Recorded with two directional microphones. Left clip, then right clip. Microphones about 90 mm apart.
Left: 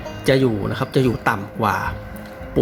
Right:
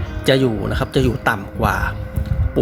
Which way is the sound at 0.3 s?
35° right (ahead or behind).